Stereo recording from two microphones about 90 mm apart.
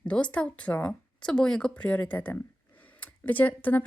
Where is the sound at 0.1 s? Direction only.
15° left (ahead or behind).